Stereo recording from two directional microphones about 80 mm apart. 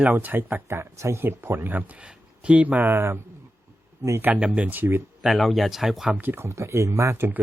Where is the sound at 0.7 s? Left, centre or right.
Right; by 2.8 s centre.